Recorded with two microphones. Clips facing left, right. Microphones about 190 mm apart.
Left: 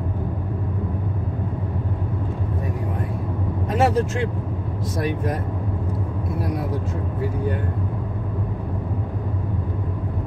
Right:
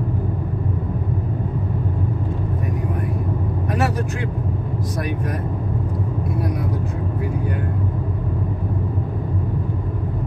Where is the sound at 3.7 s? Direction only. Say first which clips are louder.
Left 4 dB; 25° left (ahead or behind).